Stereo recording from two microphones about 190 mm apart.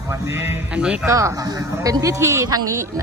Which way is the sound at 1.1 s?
15° right (ahead or behind).